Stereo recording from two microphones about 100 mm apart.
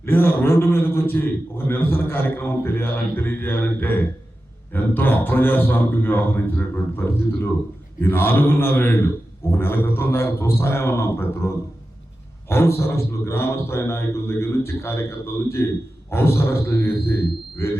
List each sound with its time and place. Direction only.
0.0 s a man's voice: 20° left (ahead or behind)